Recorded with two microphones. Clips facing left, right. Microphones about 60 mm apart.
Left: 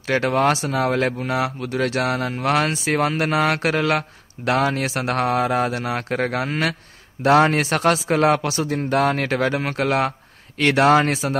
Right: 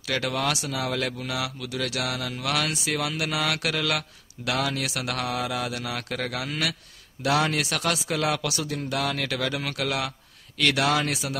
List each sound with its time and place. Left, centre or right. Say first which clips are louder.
0.0 s speech: left 8 dB; left